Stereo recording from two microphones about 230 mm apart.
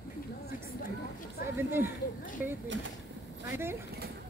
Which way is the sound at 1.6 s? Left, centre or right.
Centre.